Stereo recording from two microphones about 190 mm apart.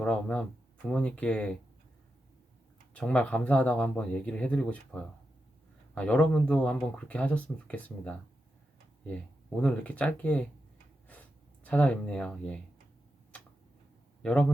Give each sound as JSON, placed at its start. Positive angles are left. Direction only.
{"t": 0.0, "sound": "speech", "side_deg": 5}
{"t": 2.9, "sound": "speech", "side_deg": 5}
{"t": 11.1, "sound": "a sound", "side_deg": 10}
{"t": 14.2, "sound": "a man's voice", "side_deg": 5}